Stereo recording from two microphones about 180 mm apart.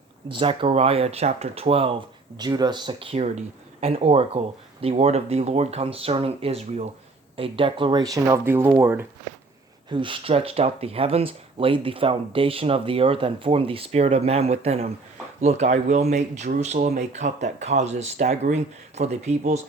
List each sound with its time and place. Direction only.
0.3 s speech: 30° right (ahead or behind); by 9.0 s 10° right (ahead or behind)
9.9 s speech: 25° right (ahead or behind)